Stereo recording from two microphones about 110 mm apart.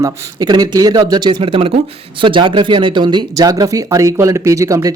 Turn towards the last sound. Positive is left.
turn(degrees=-30)  # may be behind; listen again after turning